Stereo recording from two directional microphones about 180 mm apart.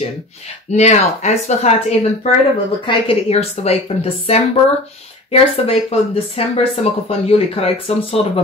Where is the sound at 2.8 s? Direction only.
30° left (ahead or behind).